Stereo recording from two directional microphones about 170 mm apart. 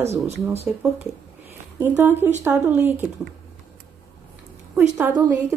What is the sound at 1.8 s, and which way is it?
Speech, 15° right (ahead or behind).